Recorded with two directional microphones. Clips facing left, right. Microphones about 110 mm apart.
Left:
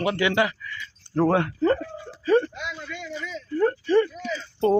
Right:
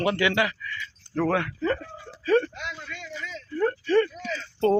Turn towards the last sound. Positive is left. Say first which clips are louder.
# left 1 dB
turn(degrees=15)  # may be behind; listen again after turning